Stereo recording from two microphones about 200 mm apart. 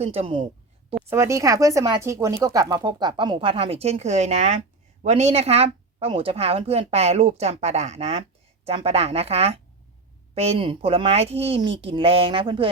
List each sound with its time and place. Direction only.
0.0 s speech: 30° right (ahead or behind)
0.9 s a woman's voice: 15° right (ahead or behind)